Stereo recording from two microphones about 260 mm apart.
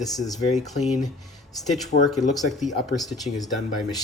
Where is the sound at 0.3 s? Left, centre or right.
Left.